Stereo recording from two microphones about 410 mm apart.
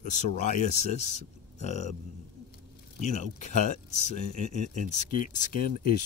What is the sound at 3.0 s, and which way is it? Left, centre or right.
Speech, centre.